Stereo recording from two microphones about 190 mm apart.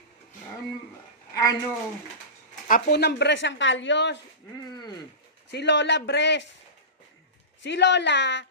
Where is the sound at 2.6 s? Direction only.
50° left (ahead or behind); by 4.2 s 65° left (ahead or behind).